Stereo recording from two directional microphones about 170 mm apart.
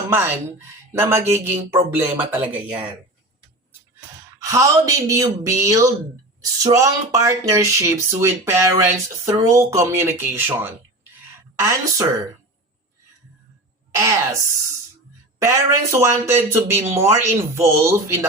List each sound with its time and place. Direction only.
0.9 s speech: 15° right (ahead or behind)
4.4 s speech: 20° right (ahead or behind)
13.9 s speech: 15° right (ahead or behind)